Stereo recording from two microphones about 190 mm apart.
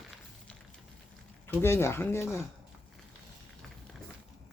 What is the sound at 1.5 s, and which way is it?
Speech, 15° left (ahead or behind).